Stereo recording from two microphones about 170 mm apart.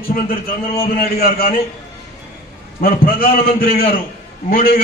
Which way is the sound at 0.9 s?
60° left (ahead or behind).